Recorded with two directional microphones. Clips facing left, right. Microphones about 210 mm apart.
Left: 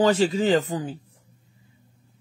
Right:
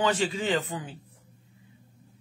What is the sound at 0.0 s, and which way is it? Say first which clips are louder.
Speech: left 7 dB; 40° left (ahead or behind).